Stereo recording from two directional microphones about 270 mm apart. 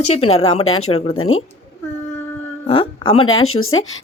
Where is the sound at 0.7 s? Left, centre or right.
Left.